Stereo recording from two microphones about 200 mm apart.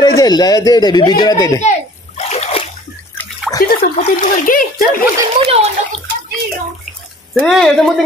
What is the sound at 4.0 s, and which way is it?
Speech, 45° left (ahead or behind).